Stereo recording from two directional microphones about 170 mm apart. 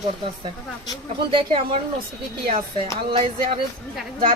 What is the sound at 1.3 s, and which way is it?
Speech, 30° right (ahead or behind).